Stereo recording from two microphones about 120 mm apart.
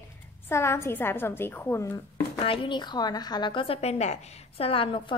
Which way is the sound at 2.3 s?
45° left (ahead or behind).